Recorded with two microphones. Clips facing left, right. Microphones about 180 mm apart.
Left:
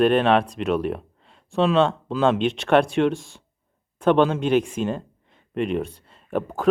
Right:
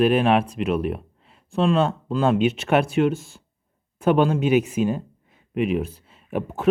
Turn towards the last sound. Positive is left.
turn(degrees=-5)  # may be behind; listen again after turning